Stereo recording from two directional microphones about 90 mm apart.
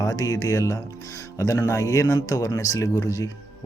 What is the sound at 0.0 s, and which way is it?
Speech, 40° left (ahead or behind).